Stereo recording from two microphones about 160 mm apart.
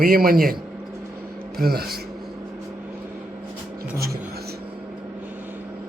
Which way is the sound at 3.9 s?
75° right (ahead or behind).